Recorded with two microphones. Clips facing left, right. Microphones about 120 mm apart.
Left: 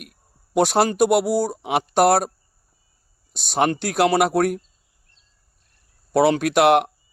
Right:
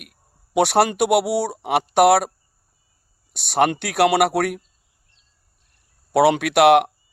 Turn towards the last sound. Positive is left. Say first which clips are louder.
# right 2 dB
turn(degrees=-70)  # may be behind; listen again after turning